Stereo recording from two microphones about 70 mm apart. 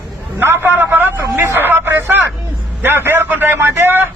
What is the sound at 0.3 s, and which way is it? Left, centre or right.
A man's voice, right.